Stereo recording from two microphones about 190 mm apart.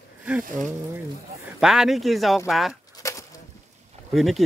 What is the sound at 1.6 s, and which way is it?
Speech, centre (ahead or behind).